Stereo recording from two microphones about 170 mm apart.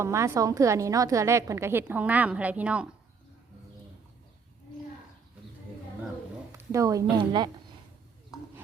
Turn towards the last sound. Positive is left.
turn(degrees=-25)  # may be behind; listen again after turning